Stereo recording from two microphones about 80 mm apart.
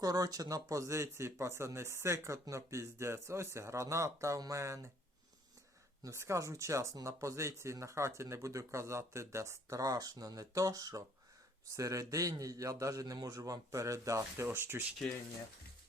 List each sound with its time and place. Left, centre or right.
0.0 s speech: right
6.0 s a man's voice: right